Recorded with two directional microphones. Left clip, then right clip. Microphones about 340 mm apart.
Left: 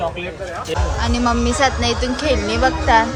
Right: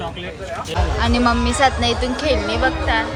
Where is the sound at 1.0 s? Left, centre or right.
Centre.